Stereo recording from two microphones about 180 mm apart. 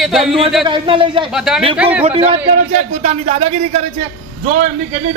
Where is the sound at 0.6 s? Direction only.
30° right (ahead or behind).